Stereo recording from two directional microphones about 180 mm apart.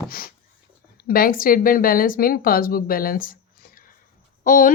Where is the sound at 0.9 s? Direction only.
55° left (ahead or behind).